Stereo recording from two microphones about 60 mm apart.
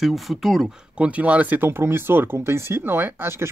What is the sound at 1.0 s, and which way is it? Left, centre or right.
Speech, right.